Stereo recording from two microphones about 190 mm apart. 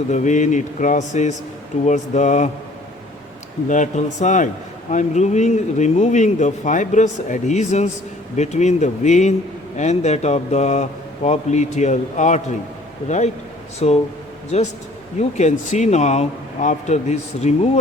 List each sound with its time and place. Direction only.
0.1 s speech: 40° left (ahead or behind)
3.7 s speech: 40° left (ahead or behind)